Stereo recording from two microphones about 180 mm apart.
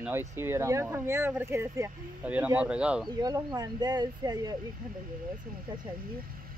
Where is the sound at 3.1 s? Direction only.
20° right (ahead or behind).